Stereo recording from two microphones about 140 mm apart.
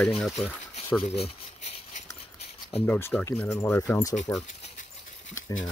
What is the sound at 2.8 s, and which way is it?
Speech, 15° left (ahead or behind).